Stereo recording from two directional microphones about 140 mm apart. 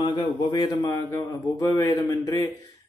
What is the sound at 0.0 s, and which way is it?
Speech, 25° left (ahead or behind).